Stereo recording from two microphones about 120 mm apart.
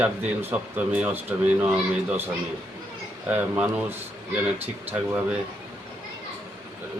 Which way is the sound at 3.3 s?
15° right (ahead or behind).